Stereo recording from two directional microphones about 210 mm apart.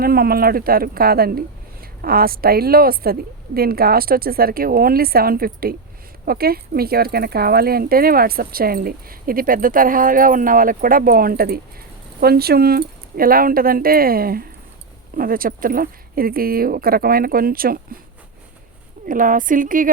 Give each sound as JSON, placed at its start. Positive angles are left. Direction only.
{"t": 0.0, "sound": "a woman's voice", "side_deg": -45}
{"t": 19.0, "sound": "a woman's voice", "side_deg": -40}